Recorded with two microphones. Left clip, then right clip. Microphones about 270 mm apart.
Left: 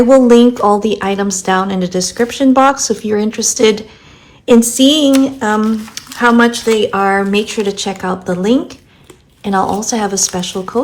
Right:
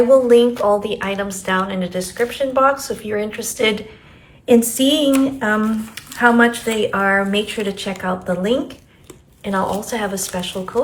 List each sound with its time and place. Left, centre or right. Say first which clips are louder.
0.1 s speech: left 6 dB; left